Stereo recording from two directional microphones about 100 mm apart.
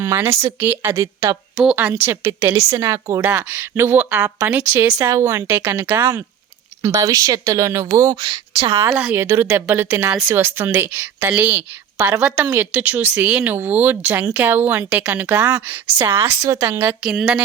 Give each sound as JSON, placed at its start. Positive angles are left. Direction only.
{"t": 0.0, "sound": "a woman's voice", "side_deg": -25}
{"t": 2.2, "sound": "a woman's voice", "side_deg": -35}
{"t": 4.9, "sound": "a woman's voice", "side_deg": -30}
{"t": 8.1, "sound": "speech", "side_deg": -45}
{"t": 8.7, "sound": "a woman's voice", "side_deg": -30}
{"t": 17.0, "sound": "a woman's voice", "side_deg": -5}